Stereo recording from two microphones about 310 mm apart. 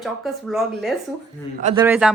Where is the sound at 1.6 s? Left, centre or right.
Right.